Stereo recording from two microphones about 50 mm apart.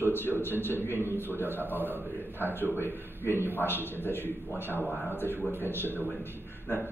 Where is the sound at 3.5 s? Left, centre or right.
Left.